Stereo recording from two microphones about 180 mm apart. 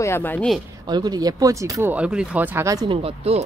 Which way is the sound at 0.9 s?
20° right (ahead or behind).